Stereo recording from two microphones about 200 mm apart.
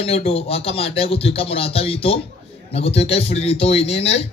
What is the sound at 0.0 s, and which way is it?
A man's voice, 30° left (ahead or behind).